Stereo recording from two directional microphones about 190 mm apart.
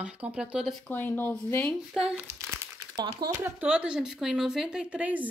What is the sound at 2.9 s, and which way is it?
Speech, 20° right (ahead or behind).